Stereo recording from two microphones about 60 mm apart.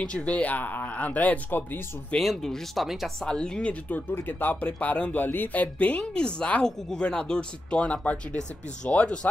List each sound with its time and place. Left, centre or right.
0.0 s speech: centre
2.1 s speech: centre
3.2 s speech: centre
4.1 s speech: left; by 5.1 s centre
5.1 s speech: left